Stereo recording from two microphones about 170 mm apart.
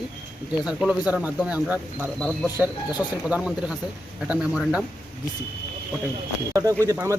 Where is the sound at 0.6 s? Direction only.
5° right (ahead or behind).